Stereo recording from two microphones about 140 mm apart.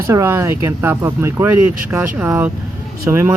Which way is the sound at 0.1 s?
20° right (ahead or behind).